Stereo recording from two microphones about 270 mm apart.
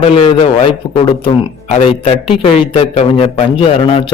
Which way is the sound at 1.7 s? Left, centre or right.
Left.